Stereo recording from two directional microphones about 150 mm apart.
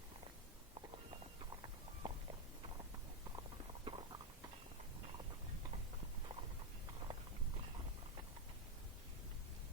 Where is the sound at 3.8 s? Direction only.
35° right (ahead or behind).